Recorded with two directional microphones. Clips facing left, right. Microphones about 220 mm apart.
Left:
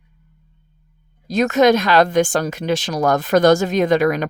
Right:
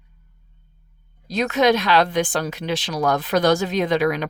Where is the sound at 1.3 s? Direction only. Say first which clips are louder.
Left 4 dB; 45° left (ahead or behind).